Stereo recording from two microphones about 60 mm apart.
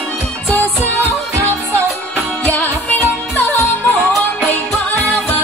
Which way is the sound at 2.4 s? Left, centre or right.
Left.